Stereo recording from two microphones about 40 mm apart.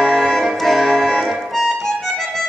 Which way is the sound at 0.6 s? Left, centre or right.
Centre.